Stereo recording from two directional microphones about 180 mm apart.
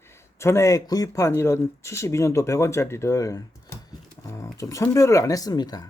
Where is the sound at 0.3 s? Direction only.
15° left (ahead or behind).